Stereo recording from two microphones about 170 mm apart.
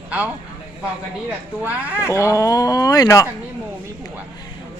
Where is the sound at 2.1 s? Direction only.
20° left (ahead or behind).